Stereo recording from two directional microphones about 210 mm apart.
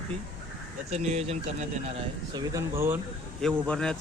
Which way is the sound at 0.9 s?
30° right (ahead or behind).